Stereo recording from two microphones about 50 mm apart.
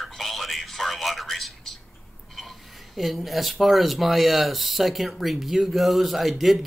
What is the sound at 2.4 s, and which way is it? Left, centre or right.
Speech, centre.